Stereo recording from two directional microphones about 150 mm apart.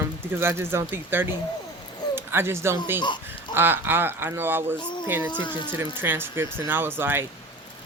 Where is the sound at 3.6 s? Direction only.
15° right (ahead or behind).